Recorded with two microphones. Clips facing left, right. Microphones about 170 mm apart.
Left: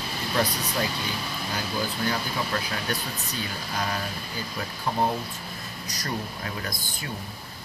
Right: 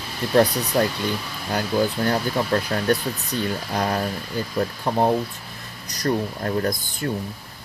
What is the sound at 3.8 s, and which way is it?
Speech, 60° right (ahead or behind).